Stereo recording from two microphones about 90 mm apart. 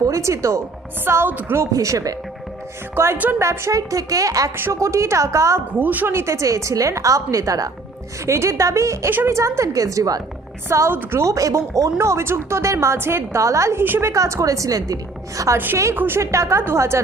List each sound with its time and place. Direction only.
0.0 s a woman's voice: 35° right (ahead or behind)
1.7 s a woman's voice: 35° right (ahead or behind)
2.9 s a woman's voice: 25° right (ahead or behind)
5.8 s a woman's voice: 20° right (ahead or behind); by 10.2 s 40° right (ahead or behind)
10.7 s a woman's voice: 25° right (ahead or behind)
13.8 s a woman's voice: 25° right (ahead or behind)
14.1 s a woman's voice: 35° right (ahead or behind)
15.5 s a woman's voice: 25° right (ahead or behind)